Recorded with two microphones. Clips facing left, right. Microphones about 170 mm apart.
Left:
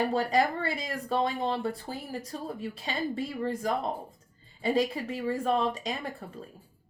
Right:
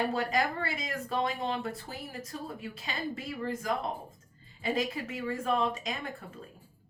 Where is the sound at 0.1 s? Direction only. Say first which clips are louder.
Left 4 dB; 35° left (ahead or behind).